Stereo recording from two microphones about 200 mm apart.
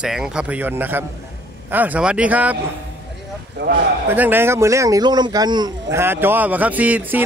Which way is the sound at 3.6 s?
60° right (ahead or behind).